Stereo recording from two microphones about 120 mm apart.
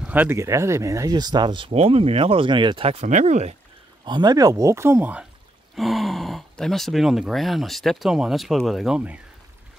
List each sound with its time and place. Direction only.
0.1 s speech: 15° right (ahead or behind)
0.4 s speech: 25° right (ahead or behind); by 1.7 s 40° right (ahead or behind)
1.7 s speech: 55° right (ahead or behind); by 2.9 s 40° right (ahead or behind)
2.9 s speech: 75° right (ahead or behind)
4.0 s speech: 40° right (ahead or behind); by 5.1 s 20° right (ahead or behind)
5.8 s speech: centre (ahead or behind)